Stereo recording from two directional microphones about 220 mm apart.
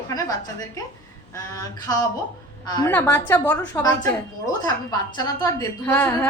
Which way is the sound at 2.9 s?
5° left (ahead or behind).